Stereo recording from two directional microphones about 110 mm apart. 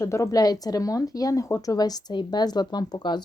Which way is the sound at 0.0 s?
25° left (ahead or behind).